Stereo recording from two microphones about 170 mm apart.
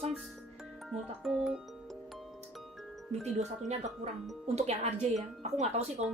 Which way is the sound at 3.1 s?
40° right (ahead or behind).